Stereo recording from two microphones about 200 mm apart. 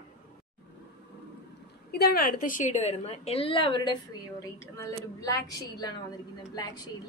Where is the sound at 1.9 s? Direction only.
50° left (ahead or behind).